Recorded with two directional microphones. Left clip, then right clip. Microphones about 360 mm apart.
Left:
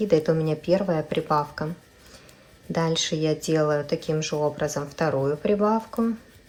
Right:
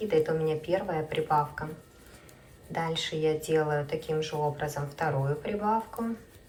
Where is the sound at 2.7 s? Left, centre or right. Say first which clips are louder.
Left 6 dB; centre.